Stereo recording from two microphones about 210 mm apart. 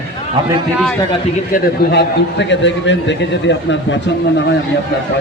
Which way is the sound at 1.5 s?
50° left (ahead or behind).